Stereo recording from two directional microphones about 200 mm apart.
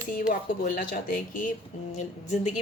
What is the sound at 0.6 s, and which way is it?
A woman's voice, 45° left (ahead or behind).